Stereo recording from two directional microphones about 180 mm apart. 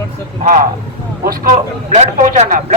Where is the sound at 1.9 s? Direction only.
45° right (ahead or behind).